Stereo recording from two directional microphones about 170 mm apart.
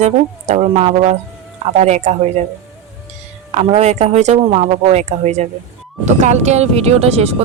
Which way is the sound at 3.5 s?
40° right (ahead or behind).